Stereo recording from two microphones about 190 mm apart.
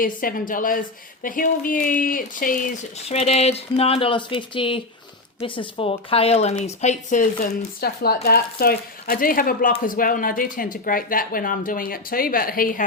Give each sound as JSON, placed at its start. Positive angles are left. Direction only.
{"t": 0.0, "sound": "speech", "side_deg": 45}
{"t": 7.8, "sound": "speech", "side_deg": 55}